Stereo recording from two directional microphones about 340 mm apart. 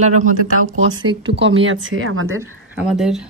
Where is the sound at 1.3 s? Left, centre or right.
Right.